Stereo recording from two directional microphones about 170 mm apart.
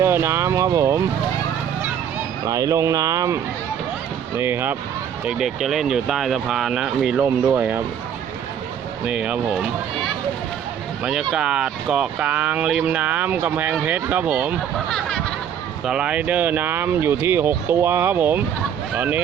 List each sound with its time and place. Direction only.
0.0 s speech: 15° right (ahead or behind)
2.4 s speech: 20° right (ahead or behind)
9.0 s speech: 5° right (ahead or behind)
14.8 s a sound: 5° left (ahead or behind)
15.9 s speech: 5° right (ahead or behind)